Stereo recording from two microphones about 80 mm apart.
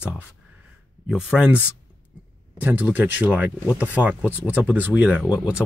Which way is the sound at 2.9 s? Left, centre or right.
Right.